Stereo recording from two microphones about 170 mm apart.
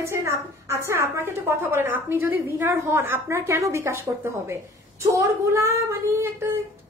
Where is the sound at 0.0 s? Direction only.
15° right (ahead or behind).